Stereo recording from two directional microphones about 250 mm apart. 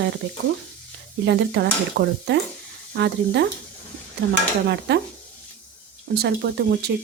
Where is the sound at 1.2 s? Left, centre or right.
Right.